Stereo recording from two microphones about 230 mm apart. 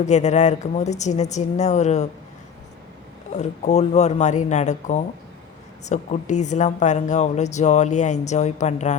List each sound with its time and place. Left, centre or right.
0.0 s speech: left
3.3 s speech: left